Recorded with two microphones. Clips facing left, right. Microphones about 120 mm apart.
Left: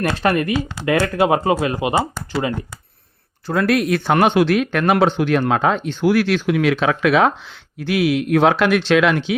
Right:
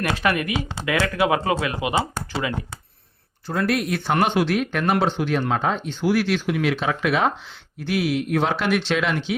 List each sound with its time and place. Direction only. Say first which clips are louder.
0.1 s speech: left 4 dB; 35° left (ahead or behind)
3.4 s speech: left 5 dB; 85° left